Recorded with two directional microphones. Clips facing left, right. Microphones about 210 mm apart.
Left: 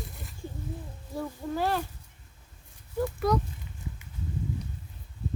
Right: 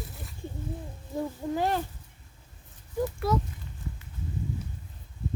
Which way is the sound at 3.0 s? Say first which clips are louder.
Left 1 dB; 5° right (ahead or behind).